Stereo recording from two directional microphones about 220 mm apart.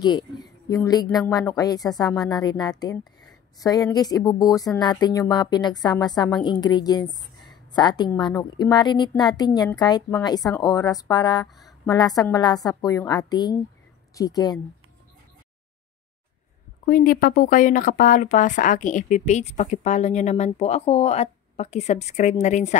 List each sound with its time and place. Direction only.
0.7 s a woman's voice: 15° left (ahead or behind)
11.5 s a sound: centre (ahead or behind)
11.9 s a woman's voice: 15° left (ahead or behind)
16.8 s speech: 40° left (ahead or behind)